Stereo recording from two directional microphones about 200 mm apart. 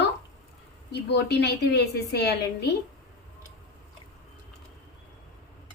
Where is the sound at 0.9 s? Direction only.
55° left (ahead or behind).